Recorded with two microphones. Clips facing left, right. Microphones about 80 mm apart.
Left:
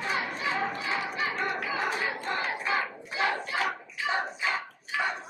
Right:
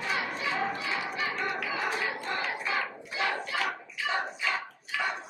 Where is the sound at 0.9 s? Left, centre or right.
Left.